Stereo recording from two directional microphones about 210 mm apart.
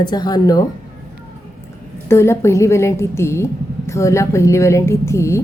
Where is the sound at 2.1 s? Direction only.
10° left (ahead or behind).